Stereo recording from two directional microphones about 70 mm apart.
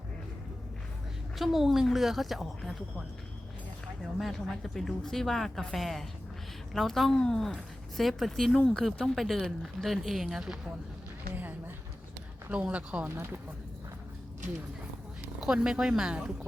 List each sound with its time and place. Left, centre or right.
1.4 s a woman's voice: centre
4.0 s a woman's voice: centre
11.3 s a sound: right
12.5 s speech: centre
15.5 s speech: centre